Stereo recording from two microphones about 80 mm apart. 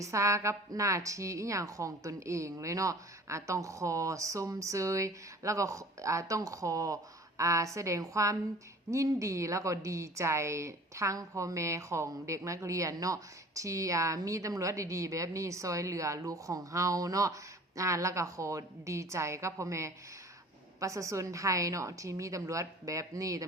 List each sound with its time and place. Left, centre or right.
0.0 s a woman's voice: right